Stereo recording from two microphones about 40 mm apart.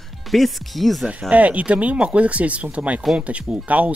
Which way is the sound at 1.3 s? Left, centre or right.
Right.